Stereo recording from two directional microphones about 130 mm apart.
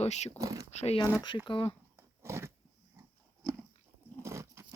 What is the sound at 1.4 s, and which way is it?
Speech, 40° left (ahead or behind).